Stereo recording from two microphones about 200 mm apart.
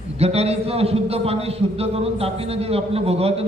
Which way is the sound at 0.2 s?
30° right (ahead or behind).